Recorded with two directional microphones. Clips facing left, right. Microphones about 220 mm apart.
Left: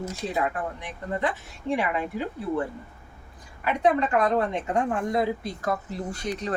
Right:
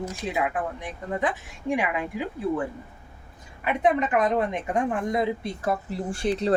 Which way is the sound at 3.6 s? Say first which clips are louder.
Even; 20° right (ahead or behind).